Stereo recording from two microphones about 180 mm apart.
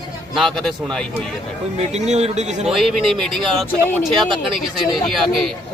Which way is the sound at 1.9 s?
40° right (ahead or behind).